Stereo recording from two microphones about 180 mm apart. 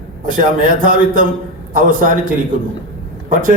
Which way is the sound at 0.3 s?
45° right (ahead or behind).